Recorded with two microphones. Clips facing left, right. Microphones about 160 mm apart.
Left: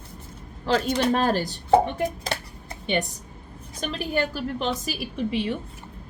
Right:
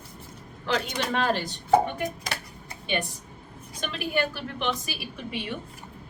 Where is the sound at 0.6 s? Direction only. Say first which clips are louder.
Left 6 dB; 30° left (ahead or behind).